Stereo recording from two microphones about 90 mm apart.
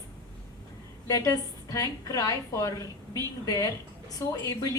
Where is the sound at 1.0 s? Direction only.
40° left (ahead or behind).